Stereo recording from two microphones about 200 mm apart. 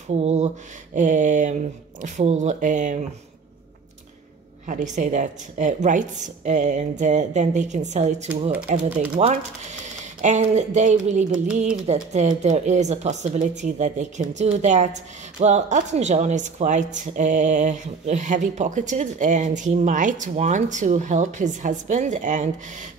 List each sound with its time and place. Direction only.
0.1 s speech: 35° right (ahead or behind)
4.6 s speech: 35° right (ahead or behind)